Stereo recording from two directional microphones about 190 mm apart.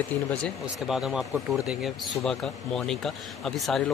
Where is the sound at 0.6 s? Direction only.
5° right (ahead or behind).